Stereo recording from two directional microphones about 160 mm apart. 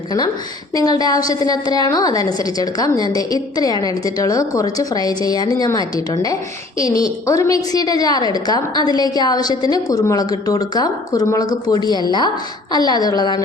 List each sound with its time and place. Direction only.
0.8 s a woman's voice: 25° left (ahead or behind)